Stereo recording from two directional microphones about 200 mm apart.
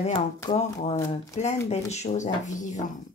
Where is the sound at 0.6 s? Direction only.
30° left (ahead or behind).